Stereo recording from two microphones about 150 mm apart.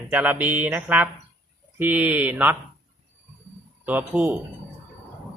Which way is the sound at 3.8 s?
10° right (ahead or behind).